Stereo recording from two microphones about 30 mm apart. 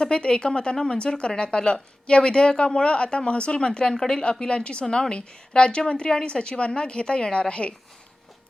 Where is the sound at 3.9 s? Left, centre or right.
Centre.